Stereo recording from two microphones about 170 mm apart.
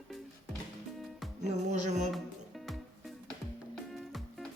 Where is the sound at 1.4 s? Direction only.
45° right (ahead or behind).